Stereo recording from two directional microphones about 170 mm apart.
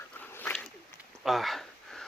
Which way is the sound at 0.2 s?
10° left (ahead or behind).